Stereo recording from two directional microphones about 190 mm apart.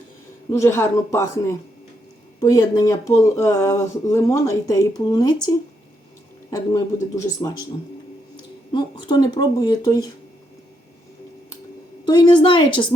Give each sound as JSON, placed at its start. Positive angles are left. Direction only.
{"t": 0.5, "sound": "speech", "side_deg": 15}
{"t": 2.4, "sound": "speech", "side_deg": 20}
{"t": 8.7, "sound": "speech", "side_deg": 25}
{"t": 12.0, "sound": "speech", "side_deg": 25}